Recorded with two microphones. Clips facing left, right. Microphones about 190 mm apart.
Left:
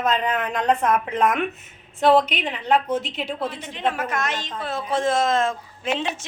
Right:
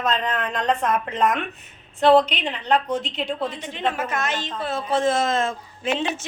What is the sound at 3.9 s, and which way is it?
Speech, 25° right (ahead or behind).